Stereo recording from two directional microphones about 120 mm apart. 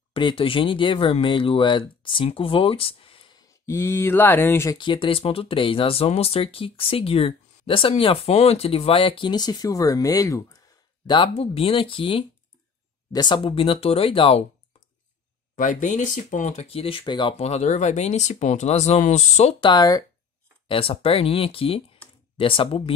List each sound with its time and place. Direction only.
0.1 s speech: 45° left (ahead or behind); by 4.7 s 20° left (ahead or behind)
4.7 s speech: 45° left (ahead or behind); by 10.6 s 30° left (ahead or behind)
11.1 s speech: 45° left (ahead or behind)
13.1 s speech: 40° left (ahead or behind)
15.5 s speech: 90° left; by 17.4 s 40° left (ahead or behind)
17.4 s speech: 65° left (ahead or behind)
19.6 s speech: 35° left (ahead or behind)
20.6 s speech: 50° left (ahead or behind)